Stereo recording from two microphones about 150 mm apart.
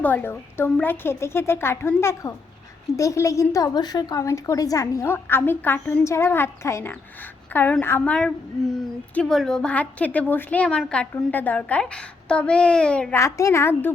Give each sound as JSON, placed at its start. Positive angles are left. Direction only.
{"t": 0.0, "sound": "a woman's voice", "side_deg": 15}
{"t": 13.1, "sound": "a woman's voice", "side_deg": 20}